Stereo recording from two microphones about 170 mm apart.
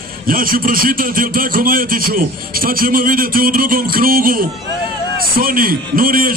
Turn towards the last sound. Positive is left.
turn(degrees=-55)  # may be behind; listen again after turning